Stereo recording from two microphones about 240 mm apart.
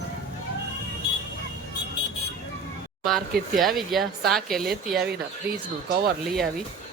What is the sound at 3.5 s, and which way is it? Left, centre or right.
Speech, centre.